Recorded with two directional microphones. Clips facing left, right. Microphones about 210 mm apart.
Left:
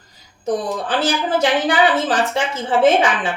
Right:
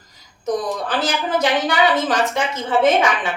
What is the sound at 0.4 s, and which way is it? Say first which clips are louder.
A woman's voice: left 1 dB; 30° left (ahead or behind).